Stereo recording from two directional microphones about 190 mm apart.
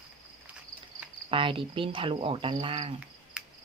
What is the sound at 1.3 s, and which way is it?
Speech, 25° right (ahead or behind).